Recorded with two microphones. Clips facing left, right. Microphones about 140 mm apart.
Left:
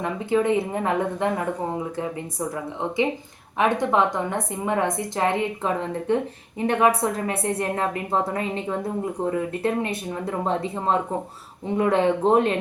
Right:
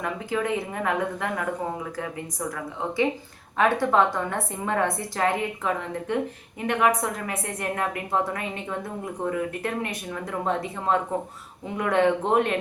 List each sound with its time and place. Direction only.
0.0 s a woman's voice: 25° left (ahead or behind)
3.6 s a woman's voice: 20° left (ahead or behind)